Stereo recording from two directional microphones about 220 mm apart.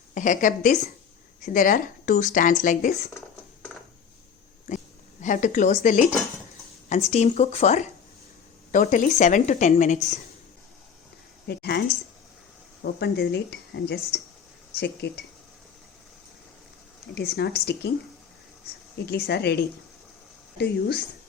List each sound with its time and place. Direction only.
0.1 s speech: 35° left (ahead or behind)
5.2 s speech: 35° left (ahead or behind)
11.4 s a sound: 50° left (ahead or behind)
12.8 s speech: 50° left (ahead or behind)
17.2 s speech: 45° left (ahead or behind)
19.0 s speech: 45° left (ahead or behind)